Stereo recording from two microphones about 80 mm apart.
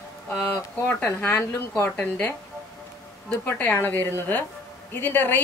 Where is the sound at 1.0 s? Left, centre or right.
Left.